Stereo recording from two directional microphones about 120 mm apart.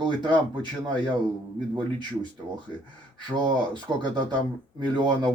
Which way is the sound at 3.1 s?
35° right (ahead or behind).